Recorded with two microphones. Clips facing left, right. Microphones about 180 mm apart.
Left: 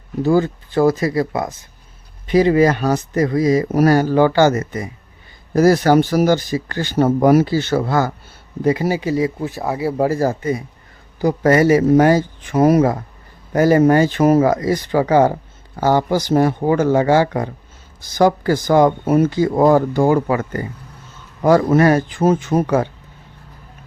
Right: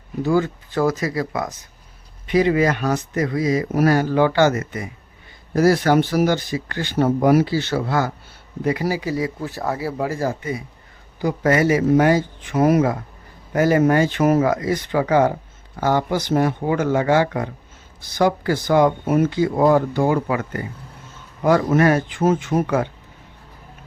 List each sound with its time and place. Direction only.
0.2 s speech: 35° left (ahead or behind)
8.6 s speech: 25° left (ahead or behind)
10.0 s speech: 40° left (ahead or behind)